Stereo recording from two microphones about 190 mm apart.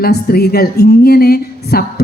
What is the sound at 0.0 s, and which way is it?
A woman's voice, 55° left (ahead or behind).